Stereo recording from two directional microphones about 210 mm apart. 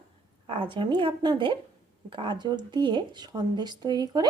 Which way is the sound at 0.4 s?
25° right (ahead or behind).